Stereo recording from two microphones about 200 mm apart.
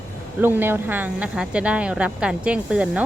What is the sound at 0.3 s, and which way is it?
Speech, 10° right (ahead or behind).